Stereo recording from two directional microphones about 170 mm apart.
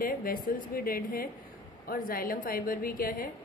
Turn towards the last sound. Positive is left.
turn(degrees=60)  # may be behind; listen again after turning